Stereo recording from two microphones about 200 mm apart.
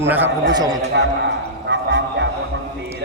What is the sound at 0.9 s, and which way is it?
Speech, 60° right (ahead or behind).